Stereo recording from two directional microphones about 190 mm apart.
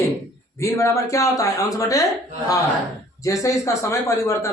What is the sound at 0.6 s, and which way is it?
Speech, 15° left (ahead or behind).